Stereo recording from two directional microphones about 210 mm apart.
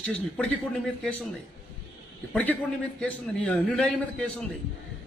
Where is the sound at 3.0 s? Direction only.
5° left (ahead or behind).